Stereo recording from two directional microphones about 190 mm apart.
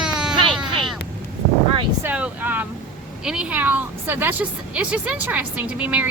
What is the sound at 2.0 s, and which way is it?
Vehicle, 10° right (ahead or behind).